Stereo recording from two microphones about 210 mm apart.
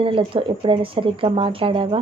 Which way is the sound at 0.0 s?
25° right (ahead or behind).